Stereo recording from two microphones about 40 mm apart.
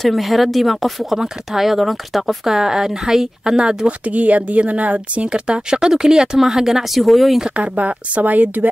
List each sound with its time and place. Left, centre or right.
0.0 s speech: centre
2.5 s speech: centre
3.5 s a woman's voice: right
4.1 s a woman's voice: right; by 7.3 s centre
7.5 s speech: right